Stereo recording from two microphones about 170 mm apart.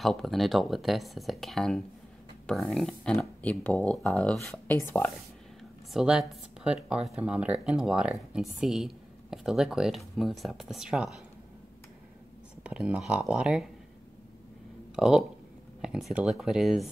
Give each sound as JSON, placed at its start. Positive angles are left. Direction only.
{"t": 0.0, "sound": "speech", "side_deg": 0}
{"t": 4.7, "sound": "speech", "side_deg": 15}
{"t": 5.9, "sound": "speech", "side_deg": -5}
{"t": 12.6, "sound": "speech", "side_deg": -5}
{"t": 15.0, "sound": "speech", "side_deg": -5}